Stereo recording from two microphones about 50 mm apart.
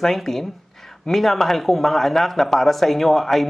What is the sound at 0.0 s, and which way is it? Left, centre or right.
Speech, centre.